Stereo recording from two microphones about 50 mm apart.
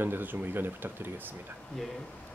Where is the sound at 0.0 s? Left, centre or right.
Right.